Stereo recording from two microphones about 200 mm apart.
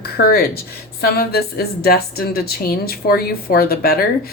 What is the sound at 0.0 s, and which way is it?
Speech, 50° left (ahead or behind).